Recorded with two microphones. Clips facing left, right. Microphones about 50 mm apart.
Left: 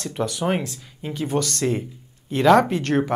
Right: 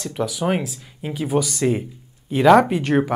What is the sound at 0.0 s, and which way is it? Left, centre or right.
Speech, centre.